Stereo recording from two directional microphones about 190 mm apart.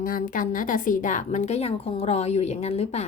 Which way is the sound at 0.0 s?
45° left (ahead or behind).